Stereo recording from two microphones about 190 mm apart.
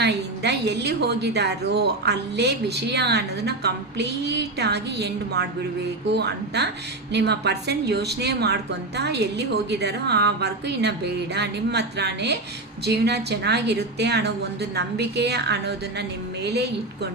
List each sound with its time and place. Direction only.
0.0 s a woman's voice: 60° right (ahead or behind)